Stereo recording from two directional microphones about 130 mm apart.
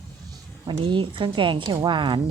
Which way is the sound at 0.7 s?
40° right (ahead or behind).